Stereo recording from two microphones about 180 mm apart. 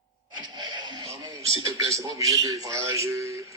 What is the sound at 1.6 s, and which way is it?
A man's voice, 20° right (ahead or behind).